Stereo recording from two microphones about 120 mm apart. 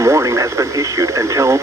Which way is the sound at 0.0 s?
25° right (ahead or behind).